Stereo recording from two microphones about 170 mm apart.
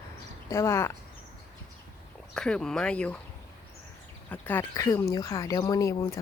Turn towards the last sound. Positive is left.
turn(degrees=20)  # may be behind; listen again after turning